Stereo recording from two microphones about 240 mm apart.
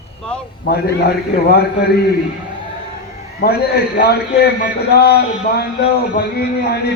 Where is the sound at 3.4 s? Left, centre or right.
Left.